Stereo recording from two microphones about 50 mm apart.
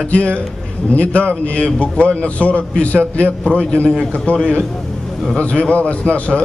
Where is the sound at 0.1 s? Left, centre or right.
Left.